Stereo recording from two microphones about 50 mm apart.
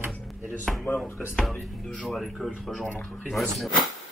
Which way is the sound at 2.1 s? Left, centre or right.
Centre.